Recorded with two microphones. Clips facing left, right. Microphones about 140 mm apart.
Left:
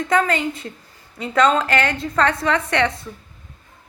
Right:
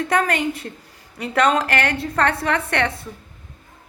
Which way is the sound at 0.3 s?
60° right (ahead or behind).